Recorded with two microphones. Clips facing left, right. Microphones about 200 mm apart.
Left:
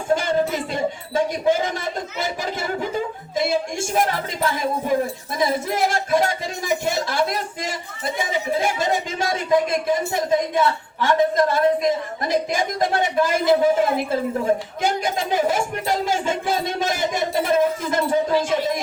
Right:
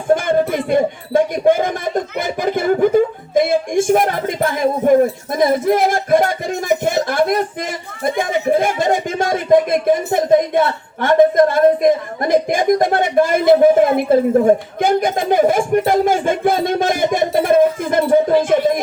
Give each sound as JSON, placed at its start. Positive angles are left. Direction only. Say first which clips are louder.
{"t": 0.1, "sound": "music", "louder": "right 5 dB", "side_deg": -55}
{"t": 5.3, "sound": "speech", "louder": "right 6 dB", "side_deg": -55}